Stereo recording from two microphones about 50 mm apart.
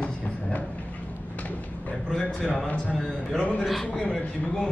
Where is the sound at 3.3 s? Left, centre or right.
Left.